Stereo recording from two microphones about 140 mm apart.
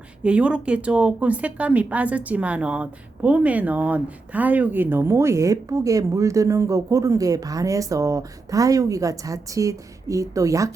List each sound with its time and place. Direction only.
0.2 s speech: 10° right (ahead or behind); by 10.7 s 25° right (ahead or behind)